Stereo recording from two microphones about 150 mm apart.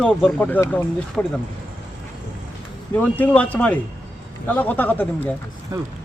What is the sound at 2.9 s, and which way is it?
Speech, 10° left (ahead or behind).